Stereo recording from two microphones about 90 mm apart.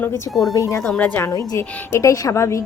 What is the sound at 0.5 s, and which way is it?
Speech, 35° left (ahead or behind).